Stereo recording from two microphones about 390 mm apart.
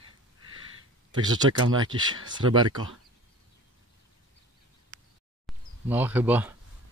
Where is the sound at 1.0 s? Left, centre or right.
Centre.